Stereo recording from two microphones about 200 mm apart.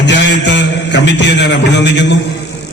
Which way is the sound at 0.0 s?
60° left (ahead or behind).